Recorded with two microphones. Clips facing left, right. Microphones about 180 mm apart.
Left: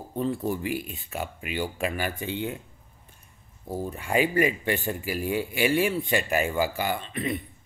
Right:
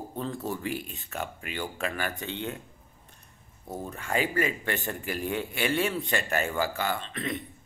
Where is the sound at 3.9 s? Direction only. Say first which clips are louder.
Left 4 dB; 15° left (ahead or behind).